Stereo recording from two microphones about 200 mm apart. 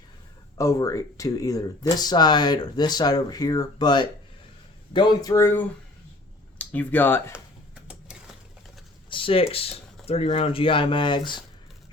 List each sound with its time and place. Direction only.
0.5 s speech: 15° left (ahead or behind)
9.0 s speech: 25° left (ahead or behind)